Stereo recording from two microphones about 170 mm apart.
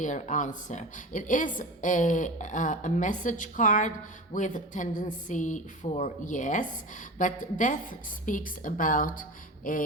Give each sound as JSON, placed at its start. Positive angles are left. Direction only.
{"t": 0.0, "sound": "a woman's voice", "side_deg": 45}